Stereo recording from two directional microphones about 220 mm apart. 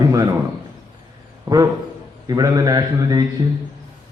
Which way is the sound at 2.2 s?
15° right (ahead or behind).